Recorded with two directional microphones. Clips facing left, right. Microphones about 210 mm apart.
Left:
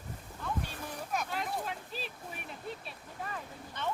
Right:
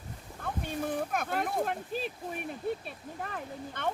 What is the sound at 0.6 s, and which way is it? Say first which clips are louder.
Speech: right 9 dB; 55° right (ahead or behind).